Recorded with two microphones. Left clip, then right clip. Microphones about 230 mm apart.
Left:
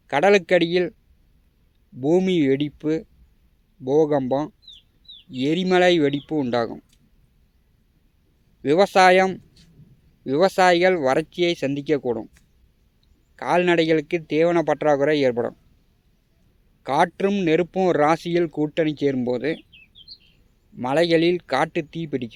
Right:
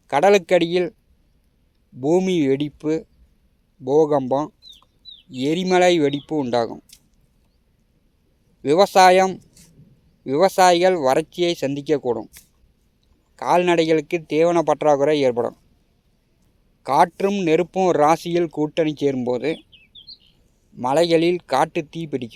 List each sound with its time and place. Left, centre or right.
0.1 s speech: centre
2.0 s speech: centre
8.6 s speech: right
16.8 s speech: centre
20.7 s speech: centre